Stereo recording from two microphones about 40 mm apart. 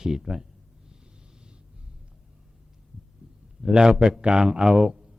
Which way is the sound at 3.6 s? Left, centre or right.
Centre.